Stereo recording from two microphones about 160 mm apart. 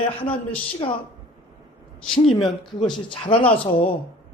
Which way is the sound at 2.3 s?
35° left (ahead or behind).